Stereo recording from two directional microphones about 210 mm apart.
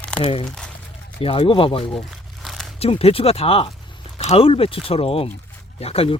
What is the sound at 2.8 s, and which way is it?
Speech, 25° left (ahead or behind).